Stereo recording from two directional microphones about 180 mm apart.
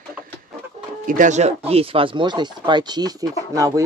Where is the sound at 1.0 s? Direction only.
45° right (ahead or behind); by 3.8 s 20° right (ahead or behind).